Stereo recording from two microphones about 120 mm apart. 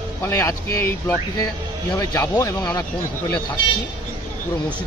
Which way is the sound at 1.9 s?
30° left (ahead or behind).